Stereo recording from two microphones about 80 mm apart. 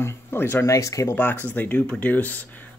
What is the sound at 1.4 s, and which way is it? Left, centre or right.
Speech, left.